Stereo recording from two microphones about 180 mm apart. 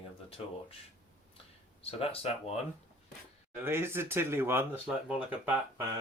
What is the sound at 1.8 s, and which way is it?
Speech, 35° left (ahead or behind).